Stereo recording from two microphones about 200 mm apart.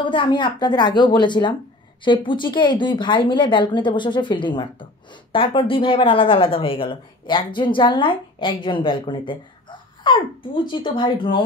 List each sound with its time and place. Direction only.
0.0 s speech: 25° left (ahead or behind)